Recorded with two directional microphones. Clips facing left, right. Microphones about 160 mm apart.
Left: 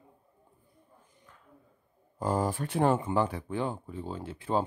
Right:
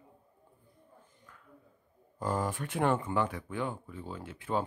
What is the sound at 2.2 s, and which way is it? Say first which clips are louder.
Speech: left 4 dB; 30° left (ahead or behind).